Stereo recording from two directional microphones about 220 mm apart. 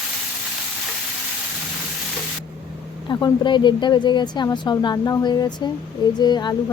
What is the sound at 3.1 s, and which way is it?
Speech, 20° left (ahead or behind).